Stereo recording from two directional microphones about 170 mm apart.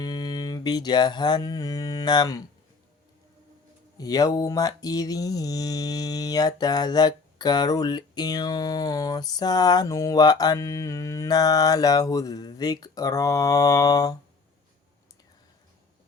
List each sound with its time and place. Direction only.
0.0 s mantra: 25° left (ahead or behind)
3.9 s mantra: 20° left (ahead or behind)